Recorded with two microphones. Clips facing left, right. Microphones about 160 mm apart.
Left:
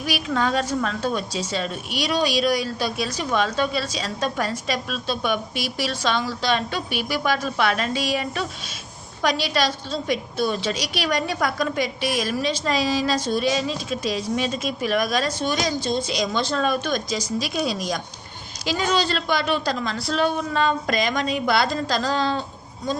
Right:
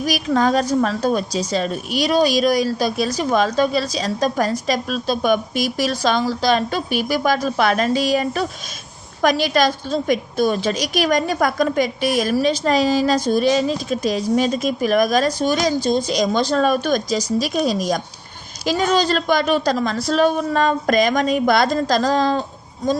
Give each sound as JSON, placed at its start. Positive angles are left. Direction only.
{"t": 0.0, "sound": "a woman's voice", "side_deg": -40}